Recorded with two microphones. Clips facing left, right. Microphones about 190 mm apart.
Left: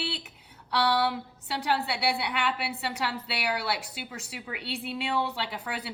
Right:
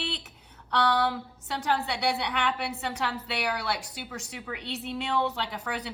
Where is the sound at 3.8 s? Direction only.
65° left (ahead or behind).